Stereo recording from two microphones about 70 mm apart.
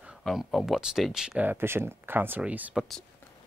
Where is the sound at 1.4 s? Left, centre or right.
Right.